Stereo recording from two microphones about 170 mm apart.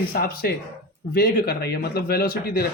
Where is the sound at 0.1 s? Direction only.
65° left (ahead or behind).